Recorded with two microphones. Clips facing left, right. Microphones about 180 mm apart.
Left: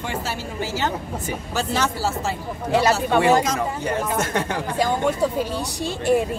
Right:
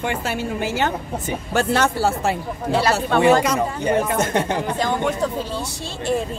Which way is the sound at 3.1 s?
15° left (ahead or behind).